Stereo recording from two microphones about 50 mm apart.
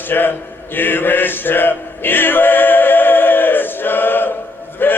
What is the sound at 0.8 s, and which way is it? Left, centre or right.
Music, left.